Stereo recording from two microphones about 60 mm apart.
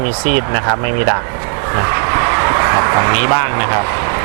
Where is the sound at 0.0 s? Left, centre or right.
Right.